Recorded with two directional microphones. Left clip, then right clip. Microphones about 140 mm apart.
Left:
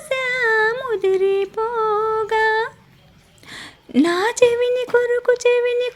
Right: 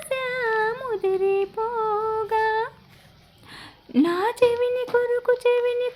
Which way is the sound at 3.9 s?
25° left (ahead or behind).